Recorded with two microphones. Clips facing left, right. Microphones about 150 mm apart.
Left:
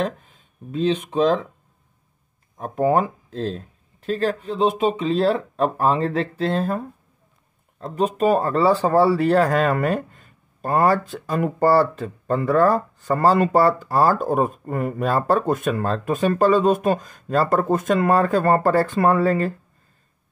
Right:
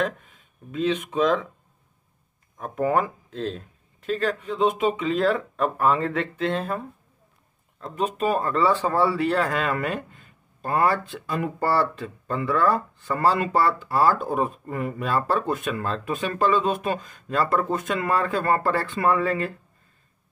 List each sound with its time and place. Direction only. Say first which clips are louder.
0.0 s speech: left 1 dB; 35° left (ahead or behind)
2.5 s speech: left 4 dB; 30° left (ahead or behind)
7.8 s speech: left 5 dB; 35° left (ahead or behind)